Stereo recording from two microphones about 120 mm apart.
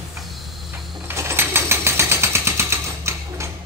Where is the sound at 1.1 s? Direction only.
20° right (ahead or behind).